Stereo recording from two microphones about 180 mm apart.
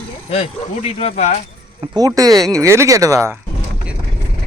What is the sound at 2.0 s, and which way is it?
Speech, 20° right (ahead or behind).